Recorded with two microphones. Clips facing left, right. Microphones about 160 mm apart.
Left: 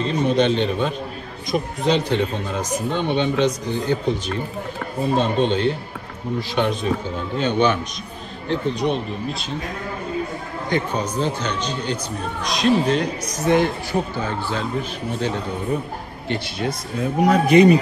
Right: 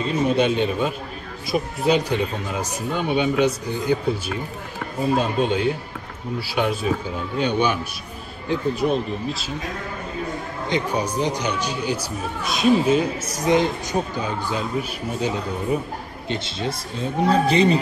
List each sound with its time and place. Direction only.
0.0 s speech: 5° right (ahead or behind)
10.7 s speech: 15° right (ahead or behind)
16.3 s speech: 25° right (ahead or behind)